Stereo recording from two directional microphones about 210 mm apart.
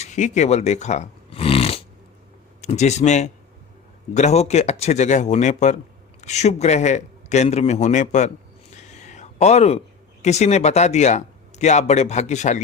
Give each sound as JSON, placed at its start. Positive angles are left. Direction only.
{"t": 0.0, "sound": "speech", "side_deg": 35}
{"t": 8.8, "sound": "a sound", "side_deg": 35}
{"t": 10.2, "sound": "speech", "side_deg": 30}